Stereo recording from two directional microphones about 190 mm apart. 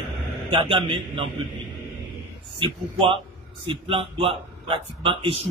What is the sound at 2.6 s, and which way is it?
Speech, 30° right (ahead or behind).